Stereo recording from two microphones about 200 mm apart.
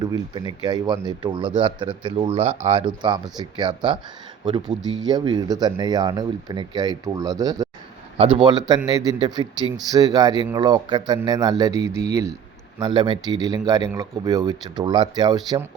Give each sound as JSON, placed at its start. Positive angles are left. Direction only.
{"t": 0.0, "sound": "speech", "side_deg": -20}